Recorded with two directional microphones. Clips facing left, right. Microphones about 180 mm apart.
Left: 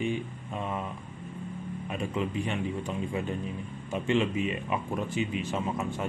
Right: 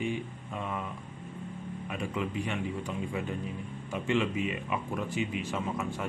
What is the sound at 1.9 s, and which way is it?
Speech, 25° left (ahead or behind).